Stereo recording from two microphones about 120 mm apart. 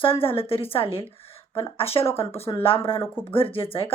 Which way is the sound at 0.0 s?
50° left (ahead or behind).